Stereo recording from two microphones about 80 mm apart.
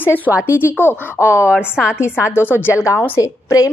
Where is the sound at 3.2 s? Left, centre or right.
Left.